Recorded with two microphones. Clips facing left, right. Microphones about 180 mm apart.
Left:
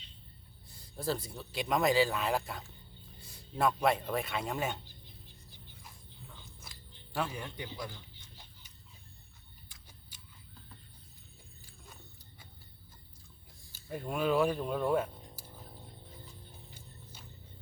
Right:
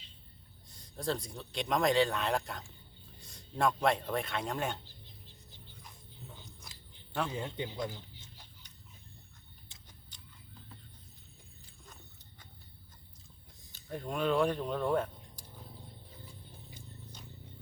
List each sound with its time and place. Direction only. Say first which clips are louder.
0.7 s a man's voice: even; 5° left (ahead or behind)
7.3 s speech: right 4 dB; 25° right (ahead or behind)
10.1 s horse: right 1 dB; 5° left (ahead or behind)
13.7 s speech: left 1 dB; 5° left (ahead or behind)
16.7 s vehicle: right 3 dB; 5° left (ahead or behind)